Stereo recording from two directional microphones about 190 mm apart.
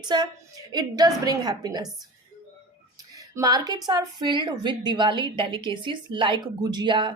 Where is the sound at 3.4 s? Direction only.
20° right (ahead or behind).